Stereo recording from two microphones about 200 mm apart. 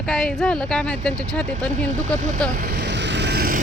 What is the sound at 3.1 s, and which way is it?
Vehicle, 55° right (ahead or behind).